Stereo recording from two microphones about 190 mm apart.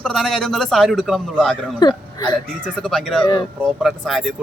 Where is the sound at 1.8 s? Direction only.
20° left (ahead or behind).